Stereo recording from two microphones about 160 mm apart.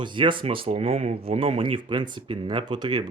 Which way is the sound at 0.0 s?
30° right (ahead or behind).